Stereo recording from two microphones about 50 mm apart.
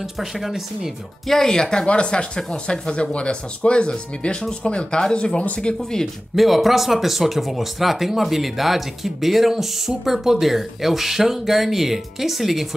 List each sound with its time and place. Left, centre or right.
0.0 s speech: centre
1.3 s speech: centre
6.3 s speech: centre